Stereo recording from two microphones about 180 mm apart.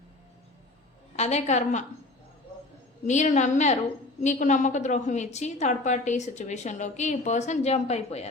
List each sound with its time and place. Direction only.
1.1 s a woman's voice: 40° left (ahead or behind)
3.1 s a woman's voice: 40° left (ahead or behind)